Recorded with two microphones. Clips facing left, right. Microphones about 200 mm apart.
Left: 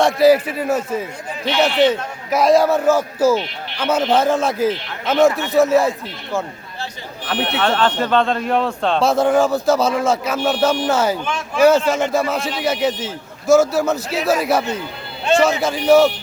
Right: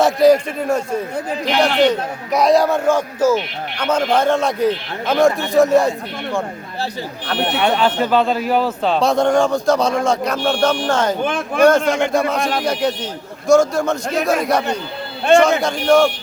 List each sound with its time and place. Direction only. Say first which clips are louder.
0.0 s speech: right 1 dB; centre (ahead or behind)
7.3 s speech: right 1 dB; centre (ahead or behind)
7.6 s speech: right 1 dB; 10° right (ahead or behind); by 11.2 s 5° left (ahead or behind)
11.2 s speech: right 4 dB; 55° right (ahead or behind)
11.9 s speech: right 1 dB; centre (ahead or behind)
15.3 s speech: right 5 dB; 55° right (ahead or behind)
15.6 s speech: left 1 dB; 5° left (ahead or behind)